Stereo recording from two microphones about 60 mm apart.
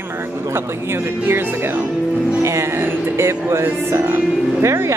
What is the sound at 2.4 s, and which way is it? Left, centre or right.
Speech, right.